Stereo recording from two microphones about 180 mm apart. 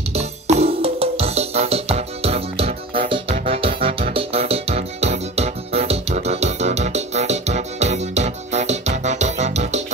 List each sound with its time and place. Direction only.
0.1 s music: 35° right (ahead or behind)